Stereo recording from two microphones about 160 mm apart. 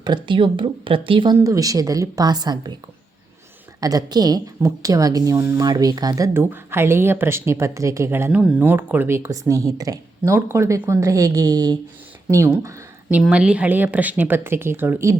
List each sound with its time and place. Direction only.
0.0 s speech: 30° right (ahead or behind)
1.4 s a woman's voice: 20° right (ahead or behind)
3.8 s a woman's voice: 25° right (ahead or behind)